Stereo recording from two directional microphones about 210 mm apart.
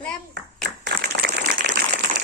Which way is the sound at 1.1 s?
45° right (ahead or behind).